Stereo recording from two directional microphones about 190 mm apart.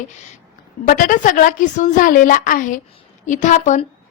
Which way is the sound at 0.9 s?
45° left (ahead or behind).